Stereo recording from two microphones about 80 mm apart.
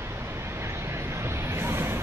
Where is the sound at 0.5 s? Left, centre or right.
Right.